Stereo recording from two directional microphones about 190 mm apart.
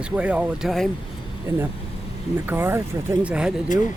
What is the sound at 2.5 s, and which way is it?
Speech, 10° right (ahead or behind).